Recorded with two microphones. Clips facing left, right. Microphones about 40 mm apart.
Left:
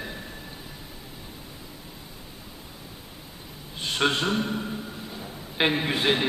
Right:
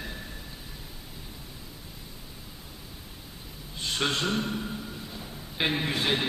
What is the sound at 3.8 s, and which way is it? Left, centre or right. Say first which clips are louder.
Speech: left 4 dB; centre.